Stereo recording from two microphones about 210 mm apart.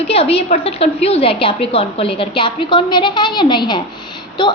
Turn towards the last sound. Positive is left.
turn(degrees=20)  # may be behind; listen again after turning